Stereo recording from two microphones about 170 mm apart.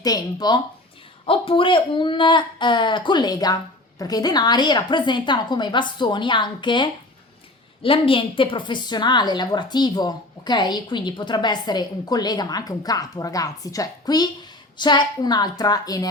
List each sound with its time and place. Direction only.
0.0 s a woman's voice: 25° left (ahead or behind)